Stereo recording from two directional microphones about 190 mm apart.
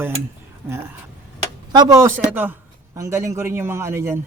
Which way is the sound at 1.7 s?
20° right (ahead or behind).